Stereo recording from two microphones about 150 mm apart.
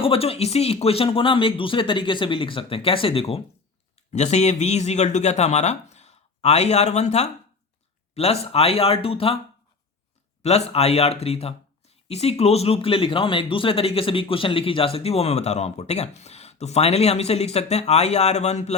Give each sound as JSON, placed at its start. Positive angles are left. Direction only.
{"t": 0.0, "sound": "speech", "side_deg": 40}
{"t": 10.4, "sound": "speech", "side_deg": 45}